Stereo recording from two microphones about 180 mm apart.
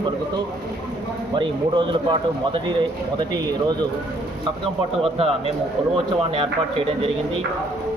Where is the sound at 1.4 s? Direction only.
25° right (ahead or behind).